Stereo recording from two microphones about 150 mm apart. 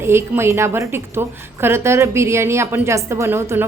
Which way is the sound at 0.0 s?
15° right (ahead or behind).